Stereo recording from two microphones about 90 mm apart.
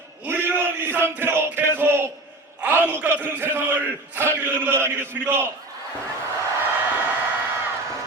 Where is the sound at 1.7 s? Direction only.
25° right (ahead or behind).